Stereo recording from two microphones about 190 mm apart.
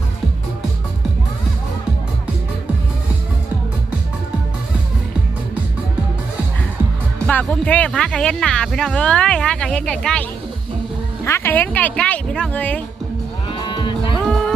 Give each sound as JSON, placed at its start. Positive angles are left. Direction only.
{"t": 7.3, "sound": "speech", "side_deg": 5}
{"t": 11.3, "sound": "a woman's voice", "side_deg": 10}
{"t": 13.5, "sound": "livestock", "side_deg": 25}